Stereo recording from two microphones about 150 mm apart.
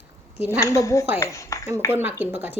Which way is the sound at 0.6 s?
20° left (ahead or behind).